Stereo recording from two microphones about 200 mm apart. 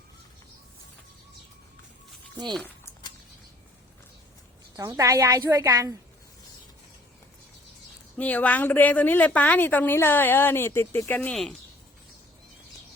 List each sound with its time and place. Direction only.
2.5 s speech: 5° left (ahead or behind)
4.8 s a woman's voice: 15° right (ahead or behind)
8.1 s a woman's voice: 5° left (ahead or behind)